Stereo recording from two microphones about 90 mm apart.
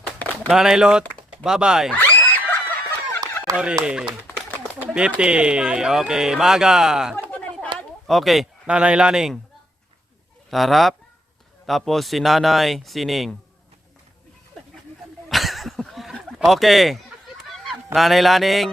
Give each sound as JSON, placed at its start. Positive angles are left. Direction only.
{"t": 0.4, "sound": "speech", "side_deg": -5}
{"t": 1.0, "sound": "a sound", "side_deg": 10}
{"t": 1.5, "sound": "speech", "side_deg": -5}
{"t": 2.0, "sound": "a sound", "side_deg": 20}
{"t": 3.5, "sound": "speech", "side_deg": -10}
{"t": 7.3, "sound": "chatter", "side_deg": 15}
{"t": 8.0, "sound": "speech", "side_deg": 0}
{"t": 8.6, "sound": "speech", "side_deg": -10}
{"t": 10.5, "sound": "speech", "side_deg": 0}
{"t": 15.3, "sound": "a sound", "side_deg": 0}
{"t": 16.5, "sound": "speech", "side_deg": 0}